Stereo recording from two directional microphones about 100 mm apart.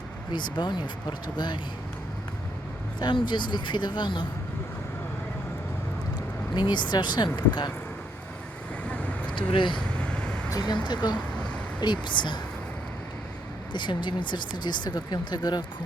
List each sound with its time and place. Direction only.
0.3 s speech: 50° left (ahead or behind)
3.0 s speech: 50° left (ahead or behind)
6.5 s speech: 50° left (ahead or behind)
9.3 s speech: 55° left (ahead or behind)
9.7 s vehicle: 10° left (ahead or behind)
10.5 s speech: 45° left (ahead or behind)
13.7 s speech: 50° left (ahead or behind)